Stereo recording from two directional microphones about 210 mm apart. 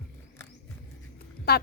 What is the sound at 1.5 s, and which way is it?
Speech, 50° left (ahead or behind).